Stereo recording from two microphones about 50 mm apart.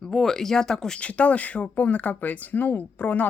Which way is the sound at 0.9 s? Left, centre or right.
Left.